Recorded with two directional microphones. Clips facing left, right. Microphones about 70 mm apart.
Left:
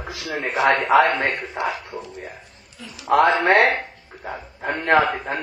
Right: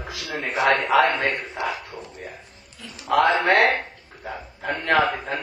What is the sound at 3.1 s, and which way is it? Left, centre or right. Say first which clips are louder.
Speech: left 2 dB; left.